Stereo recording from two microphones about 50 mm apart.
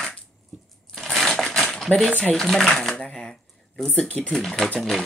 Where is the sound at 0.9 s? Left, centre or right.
Centre.